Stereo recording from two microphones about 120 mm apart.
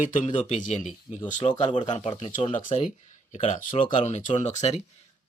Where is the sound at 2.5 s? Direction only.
80° left.